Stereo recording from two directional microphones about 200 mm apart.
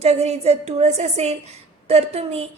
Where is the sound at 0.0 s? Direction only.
35° right (ahead or behind).